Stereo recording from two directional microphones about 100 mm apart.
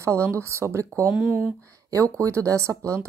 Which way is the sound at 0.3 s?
25° right (ahead or behind).